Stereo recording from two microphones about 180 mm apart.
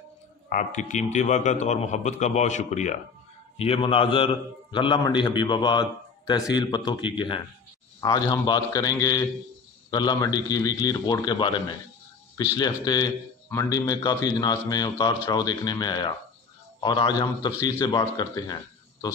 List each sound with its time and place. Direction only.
0.5 s a man's voice: 45° left (ahead or behind); by 11.5 s 25° left (ahead or behind)
12.5 s a man's voice: 25° left (ahead or behind)